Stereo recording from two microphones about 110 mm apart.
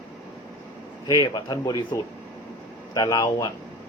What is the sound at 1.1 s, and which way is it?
A man's voice, 35° left (ahead or behind).